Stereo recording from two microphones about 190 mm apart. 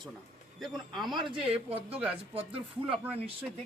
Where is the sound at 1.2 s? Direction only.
25° right (ahead or behind).